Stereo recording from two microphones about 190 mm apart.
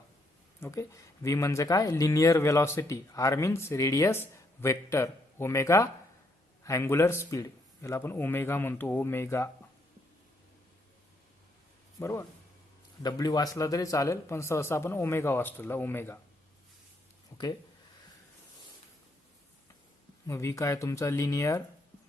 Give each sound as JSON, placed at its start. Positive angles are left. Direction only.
{"t": 0.6, "sound": "speech", "side_deg": 15}
{"t": 11.9, "sound": "speech", "side_deg": 15}
{"t": 17.3, "sound": "speech", "side_deg": 25}
{"t": 20.2, "sound": "speech", "side_deg": 15}